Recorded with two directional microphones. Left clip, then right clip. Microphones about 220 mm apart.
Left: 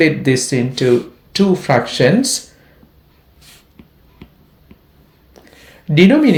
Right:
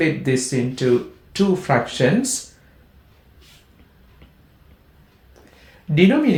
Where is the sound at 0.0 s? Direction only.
40° left (ahead or behind).